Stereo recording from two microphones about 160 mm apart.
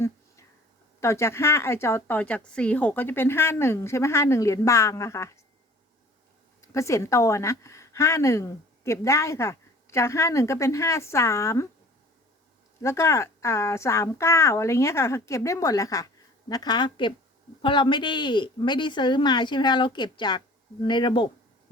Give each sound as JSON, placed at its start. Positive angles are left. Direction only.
{"t": 1.0, "sound": "a woman's voice", "side_deg": 15}
{"t": 6.7, "sound": "a woman's voice", "side_deg": 20}
{"t": 12.8, "sound": "a woman's voice", "side_deg": 15}